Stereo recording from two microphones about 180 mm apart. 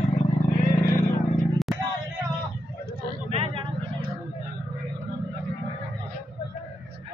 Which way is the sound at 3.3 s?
35° right (ahead or behind).